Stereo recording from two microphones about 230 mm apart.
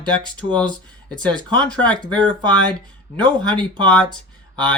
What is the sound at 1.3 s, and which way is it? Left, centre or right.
Speech, centre.